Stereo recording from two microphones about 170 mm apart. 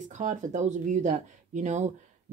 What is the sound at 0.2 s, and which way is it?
Speech, 45° right (ahead or behind).